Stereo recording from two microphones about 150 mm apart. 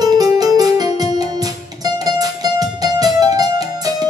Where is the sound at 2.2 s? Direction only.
25° right (ahead or behind).